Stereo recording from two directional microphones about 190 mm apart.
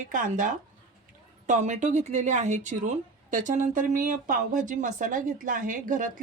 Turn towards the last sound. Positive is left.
turn(degrees=-45)  # may be behind; listen again after turning